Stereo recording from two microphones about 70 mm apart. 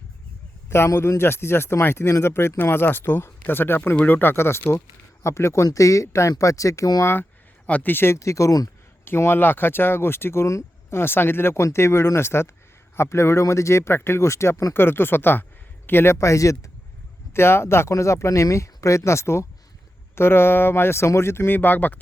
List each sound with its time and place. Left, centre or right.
0.9 s speech: left
7.0 s speech: left
9.0 s speech: left
17.3 s speech: left